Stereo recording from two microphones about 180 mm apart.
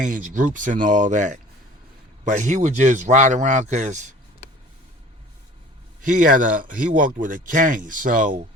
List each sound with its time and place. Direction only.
0.0 s speech: 45° right (ahead or behind)
6.0 s speech: 50° right (ahead or behind)